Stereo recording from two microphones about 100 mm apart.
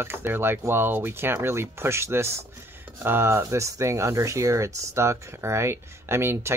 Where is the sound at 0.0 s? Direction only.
25° right (ahead or behind).